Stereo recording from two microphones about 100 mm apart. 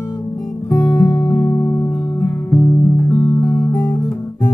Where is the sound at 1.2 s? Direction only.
20° left (ahead or behind).